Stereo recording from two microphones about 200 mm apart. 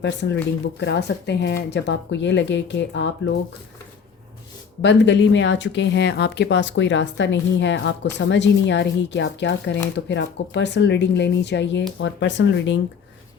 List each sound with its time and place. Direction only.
0.0 s speech: 60° left (ahead or behind)
4.8 s speech: 65° left (ahead or behind)